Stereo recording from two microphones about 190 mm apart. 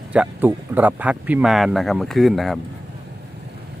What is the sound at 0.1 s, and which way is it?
Speech, 10° right (ahead or behind).